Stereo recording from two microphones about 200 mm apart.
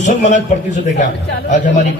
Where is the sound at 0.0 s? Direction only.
35° left (ahead or behind).